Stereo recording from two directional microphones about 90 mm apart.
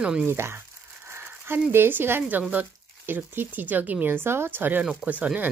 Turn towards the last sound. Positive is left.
turn(degrees=-15)  # may be behind; listen again after turning